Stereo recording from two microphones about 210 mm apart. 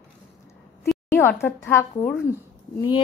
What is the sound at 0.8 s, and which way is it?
A woman's voice, 5° left (ahead or behind).